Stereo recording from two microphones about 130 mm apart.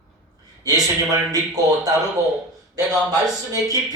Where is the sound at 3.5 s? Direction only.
25° right (ahead or behind).